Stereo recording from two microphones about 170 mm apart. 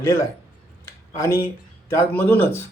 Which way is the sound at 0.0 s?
15° left (ahead or behind).